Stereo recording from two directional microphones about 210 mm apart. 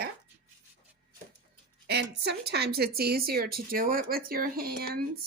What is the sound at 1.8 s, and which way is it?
Speech, 50° right (ahead or behind).